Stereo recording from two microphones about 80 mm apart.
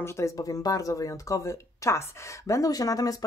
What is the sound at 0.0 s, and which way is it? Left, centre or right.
Speech, left.